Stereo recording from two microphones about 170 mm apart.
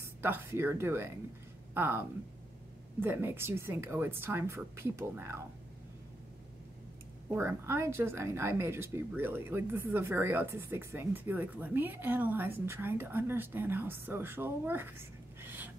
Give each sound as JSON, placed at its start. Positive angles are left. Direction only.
{"t": 0.0, "sound": "speech", "side_deg": -15}
{"t": 7.3, "sound": "speech", "side_deg": -15}